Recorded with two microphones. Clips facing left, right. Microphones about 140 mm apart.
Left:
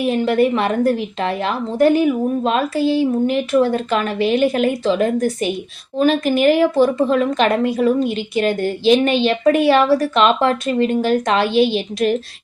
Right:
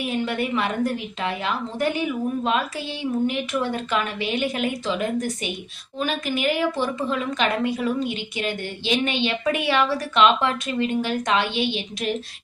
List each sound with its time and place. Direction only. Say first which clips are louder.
0.0 s speech: left 9 dB; 40° left (ahead or behind)